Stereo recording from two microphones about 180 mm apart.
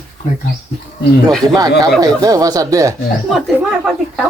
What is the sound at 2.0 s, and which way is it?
Speech, 20° right (ahead or behind).